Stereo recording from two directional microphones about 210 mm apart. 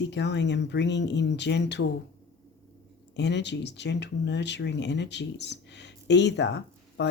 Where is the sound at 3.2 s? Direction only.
55° left (ahead or behind).